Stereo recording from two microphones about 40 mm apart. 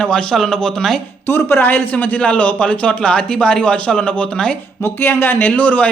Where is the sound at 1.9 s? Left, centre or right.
Left.